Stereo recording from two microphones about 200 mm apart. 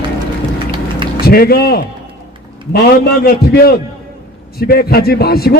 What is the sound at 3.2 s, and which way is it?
A man's voice, 50° left (ahead or behind).